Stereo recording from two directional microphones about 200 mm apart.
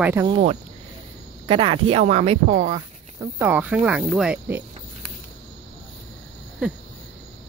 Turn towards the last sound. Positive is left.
turn(degrees=-5)  # may be behind; listen again after turning